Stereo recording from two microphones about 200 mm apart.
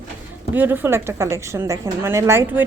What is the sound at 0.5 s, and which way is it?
A woman's voice, 10° right (ahead or behind).